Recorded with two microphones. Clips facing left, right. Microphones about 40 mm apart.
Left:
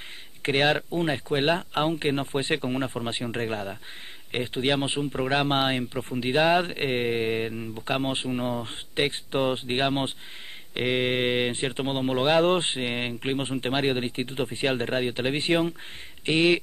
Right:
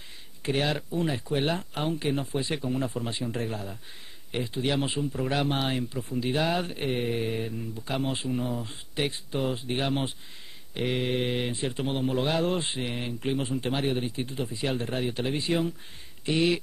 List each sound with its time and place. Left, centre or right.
0.4 s speech: left